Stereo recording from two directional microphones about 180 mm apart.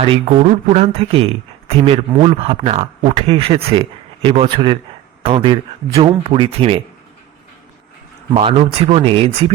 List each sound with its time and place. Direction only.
0.0 s a man's voice: 30° right (ahead or behind)
8.3 s speech: 35° right (ahead or behind)